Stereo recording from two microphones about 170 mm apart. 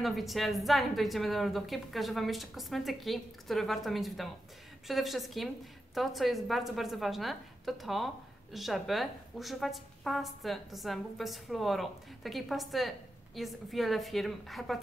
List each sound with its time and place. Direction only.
0.0 s a woman's voice: centre (ahead or behind)